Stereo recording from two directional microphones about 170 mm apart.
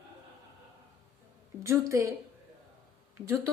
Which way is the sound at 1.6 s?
15° right (ahead or behind).